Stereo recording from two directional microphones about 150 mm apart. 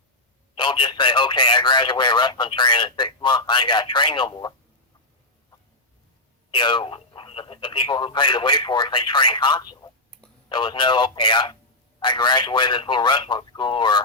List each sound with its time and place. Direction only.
0.5 s a man's voice: 35° left (ahead or behind)
6.5 s a man's voice: 30° left (ahead or behind)